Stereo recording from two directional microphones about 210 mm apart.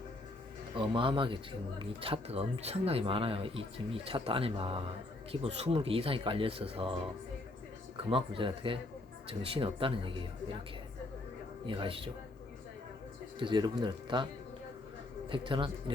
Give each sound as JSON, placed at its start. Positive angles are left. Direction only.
{"t": 0.8, "sound": "speech", "side_deg": -25}
{"t": 11.6, "sound": "speech", "side_deg": -25}
{"t": 13.4, "sound": "speech", "side_deg": -20}
{"t": 15.3, "sound": "speech", "side_deg": -25}